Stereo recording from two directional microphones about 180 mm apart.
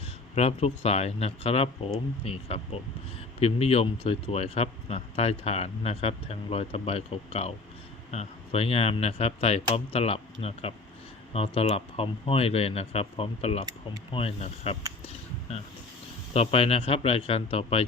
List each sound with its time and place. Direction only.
0.3 s speech: 35° left (ahead or behind)
15.0 s a sound: 35° left (ahead or behind)
16.3 s speech: 35° left (ahead or behind)